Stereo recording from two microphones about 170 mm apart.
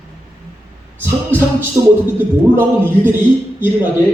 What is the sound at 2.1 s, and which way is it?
Speech, 10° right (ahead or behind).